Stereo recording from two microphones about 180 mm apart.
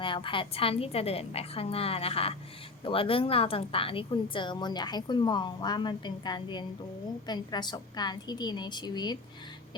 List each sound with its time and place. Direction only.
0.0 s a woman's voice: 30° left (ahead or behind)